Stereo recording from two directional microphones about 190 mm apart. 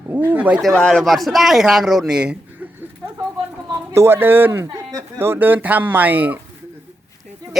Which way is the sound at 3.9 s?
15° right (ahead or behind).